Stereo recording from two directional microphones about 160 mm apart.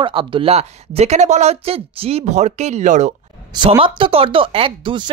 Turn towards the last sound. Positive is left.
turn(degrees=-35)  # may be behind; listen again after turning